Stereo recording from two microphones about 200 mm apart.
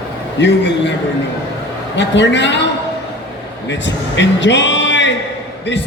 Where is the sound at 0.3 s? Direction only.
60° left (ahead or behind).